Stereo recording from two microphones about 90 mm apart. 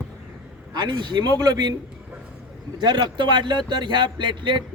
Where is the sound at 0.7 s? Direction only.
55° right (ahead or behind).